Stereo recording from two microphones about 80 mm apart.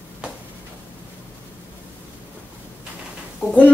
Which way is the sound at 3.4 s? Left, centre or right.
Centre.